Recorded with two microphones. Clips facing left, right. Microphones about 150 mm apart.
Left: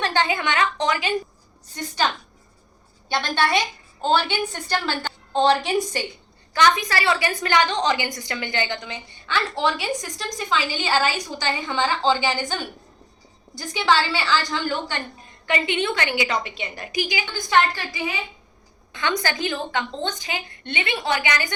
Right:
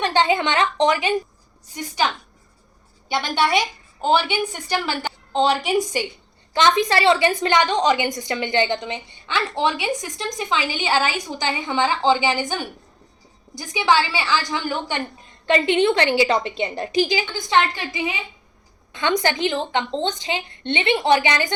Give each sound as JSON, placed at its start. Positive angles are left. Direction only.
{"t": 0.0, "sound": "a woman's voice", "side_deg": -20}
{"t": 1.6, "sound": "a woman's voice", "side_deg": -10}
{"t": 3.1, "sound": "a woman's voice", "side_deg": -10}
{"t": 15.4, "sound": "a woman's voice", "side_deg": -30}